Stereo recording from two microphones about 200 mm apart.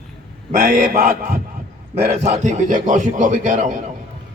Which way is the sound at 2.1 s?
35° right (ahead or behind).